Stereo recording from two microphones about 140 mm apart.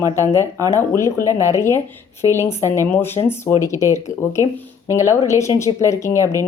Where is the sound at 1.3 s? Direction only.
20° right (ahead or behind).